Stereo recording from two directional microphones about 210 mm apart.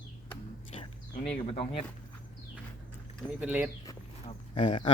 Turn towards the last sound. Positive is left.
turn(degrees=25)  # may be behind; listen again after turning